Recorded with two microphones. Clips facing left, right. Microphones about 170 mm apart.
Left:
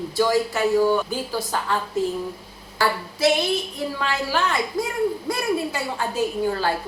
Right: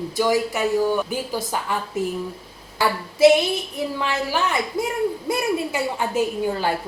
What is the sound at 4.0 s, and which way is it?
A woman's voice, 20° right (ahead or behind).